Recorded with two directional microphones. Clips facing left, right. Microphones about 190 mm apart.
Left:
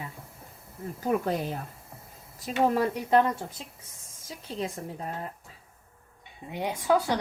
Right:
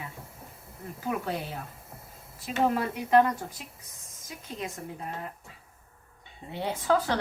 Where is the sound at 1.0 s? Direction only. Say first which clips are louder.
Left 5 dB; 45° left (ahead or behind).